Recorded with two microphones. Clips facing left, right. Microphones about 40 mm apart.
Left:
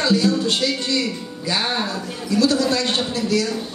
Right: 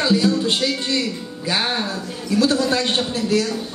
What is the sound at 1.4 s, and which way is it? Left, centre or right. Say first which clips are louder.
Speech: right 1 dB; right.